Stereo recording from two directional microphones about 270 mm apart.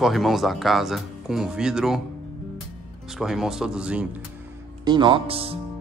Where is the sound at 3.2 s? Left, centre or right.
Centre.